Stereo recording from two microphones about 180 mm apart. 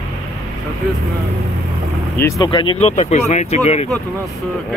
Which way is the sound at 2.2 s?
15° left (ahead or behind).